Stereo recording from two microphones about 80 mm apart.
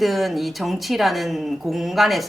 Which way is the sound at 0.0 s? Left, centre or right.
Centre.